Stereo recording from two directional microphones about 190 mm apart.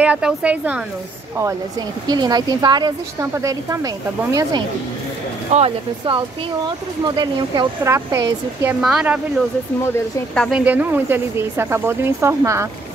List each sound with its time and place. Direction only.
0.0 s speech: 5° right (ahead or behind)
2.0 s speech: 20° right (ahead or behind)
8.8 s speech: 5° right (ahead or behind)
10.3 s speech: 5° left (ahead or behind)
10.6 s speech: 10° right (ahead or behind)